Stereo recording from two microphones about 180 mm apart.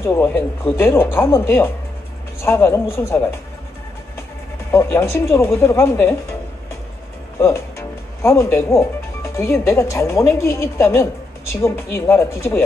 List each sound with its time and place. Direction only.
0.0 s speech: 15° left (ahead or behind)
4.6 s speech: 15° left (ahead or behind)
7.3 s speech: 15° left (ahead or behind)